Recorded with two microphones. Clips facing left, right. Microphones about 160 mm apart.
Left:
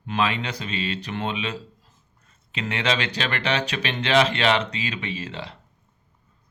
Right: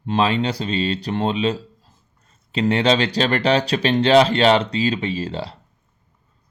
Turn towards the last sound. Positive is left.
turn(degrees=-35)  # may be behind; listen again after turning